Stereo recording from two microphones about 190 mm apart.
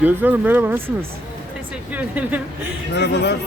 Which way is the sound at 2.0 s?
10° right (ahead or behind).